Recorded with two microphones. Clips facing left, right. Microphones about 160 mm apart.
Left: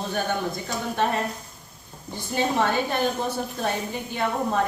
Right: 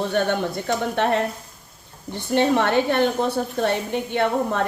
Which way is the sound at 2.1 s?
65° right (ahead or behind).